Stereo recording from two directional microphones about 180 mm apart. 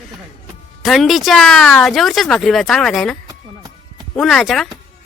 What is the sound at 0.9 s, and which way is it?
Speech, centre (ahead or behind).